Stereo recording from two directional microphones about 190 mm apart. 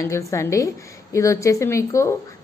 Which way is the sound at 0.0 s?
15° left (ahead or behind).